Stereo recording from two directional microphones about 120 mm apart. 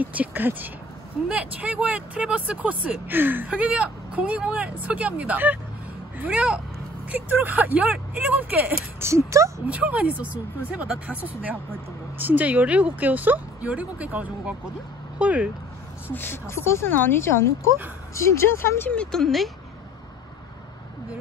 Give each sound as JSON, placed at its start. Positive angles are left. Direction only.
{"t": 0.0, "sound": "speech", "side_deg": -15}
{"t": 9.7, "sound": "speech", "side_deg": -10}
{"t": 16.1, "sound": "speech", "side_deg": 20}